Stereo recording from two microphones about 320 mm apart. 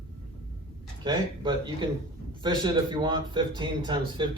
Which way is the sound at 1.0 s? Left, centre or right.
Centre.